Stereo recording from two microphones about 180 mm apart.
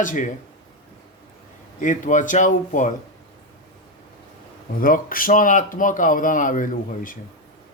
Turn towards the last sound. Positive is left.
turn(degrees=45)  # may be behind; listen again after turning